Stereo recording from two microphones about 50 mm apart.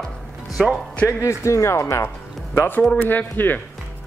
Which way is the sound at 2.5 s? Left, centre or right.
Left.